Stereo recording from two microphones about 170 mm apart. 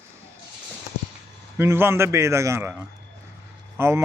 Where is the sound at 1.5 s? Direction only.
15° right (ahead or behind).